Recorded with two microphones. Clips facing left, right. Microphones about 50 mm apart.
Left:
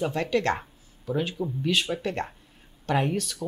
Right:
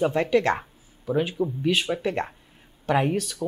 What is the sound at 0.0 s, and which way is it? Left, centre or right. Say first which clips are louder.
Speech: right 4 dB; centre.